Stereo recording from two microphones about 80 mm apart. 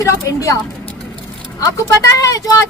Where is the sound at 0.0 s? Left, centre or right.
Left.